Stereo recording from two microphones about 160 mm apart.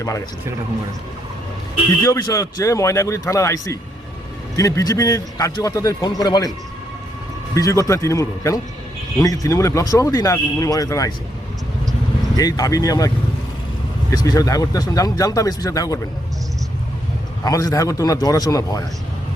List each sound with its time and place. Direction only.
2.0 s a man's voice: 20° left (ahead or behind)
7.5 s a man's voice: 20° left (ahead or behind)
12.4 s a man's voice: 25° left (ahead or behind)
14.1 s a man's voice: 25° left (ahead or behind)
17.4 s a man's voice: 25° left (ahead or behind)